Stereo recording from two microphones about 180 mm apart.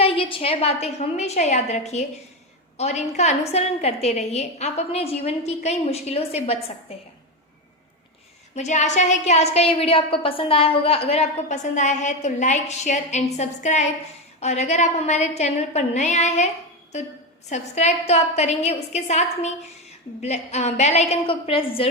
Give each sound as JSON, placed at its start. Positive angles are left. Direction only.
{"t": 0.0, "sound": "a woman's voice", "side_deg": 30}
{"t": 8.5, "sound": "a woman's voice", "side_deg": 40}
{"t": 17.5, "sound": "a woman's voice", "side_deg": 40}